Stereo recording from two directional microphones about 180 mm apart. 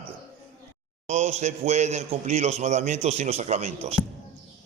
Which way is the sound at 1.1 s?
40° right (ahead or behind).